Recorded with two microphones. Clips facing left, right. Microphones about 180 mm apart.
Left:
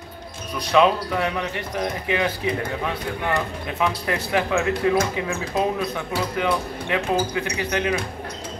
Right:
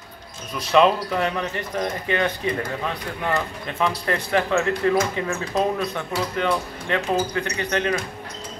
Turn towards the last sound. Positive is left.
turn(degrees=10)  # may be behind; listen again after turning